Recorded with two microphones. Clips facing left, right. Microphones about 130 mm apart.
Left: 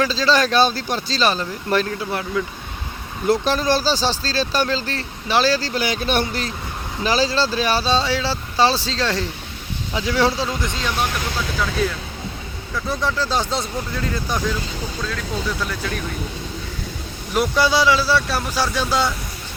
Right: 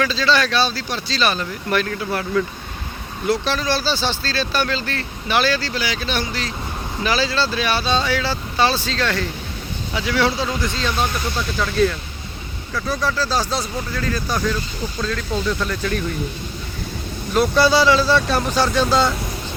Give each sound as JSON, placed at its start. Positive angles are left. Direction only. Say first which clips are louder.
{"t": 0.0, "sound": "speech", "louder": "left 1 dB", "side_deg": 35}
{"t": 3.2, "sound": "speech", "louder": "left 2 dB", "side_deg": 45}
{"t": 7.0, "sound": "speech", "louder": "left 1 dB", "side_deg": 35}
{"t": 10.6, "sound": "speech", "louder": "right 2 dB", "side_deg": 15}
{"t": 12.7, "sound": "speech", "louder": "right 1 dB", "side_deg": 20}
{"t": 17.3, "sound": "speech", "louder": "right 2 dB", "side_deg": 15}